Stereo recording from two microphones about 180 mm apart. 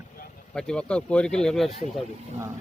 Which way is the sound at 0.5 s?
5° left (ahead or behind).